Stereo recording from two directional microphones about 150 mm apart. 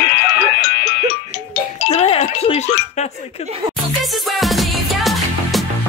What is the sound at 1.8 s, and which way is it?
Music, 40° left (ahead or behind).